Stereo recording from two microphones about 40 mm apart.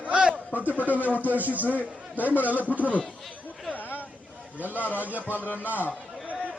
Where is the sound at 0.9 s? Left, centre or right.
Right.